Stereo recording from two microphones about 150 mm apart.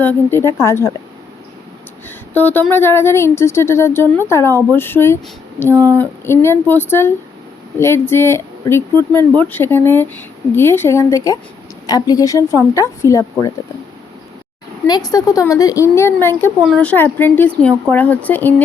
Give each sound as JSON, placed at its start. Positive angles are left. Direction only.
{"t": 0.0, "sound": "speech", "side_deg": 15}
{"t": 2.0, "sound": "a woman's voice", "side_deg": 10}
{"t": 14.8, "sound": "a woman's voice", "side_deg": 25}